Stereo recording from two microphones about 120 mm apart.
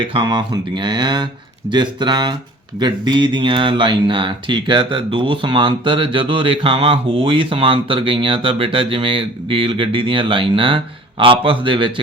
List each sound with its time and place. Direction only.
0.0 s speech: 45° right (ahead or behind)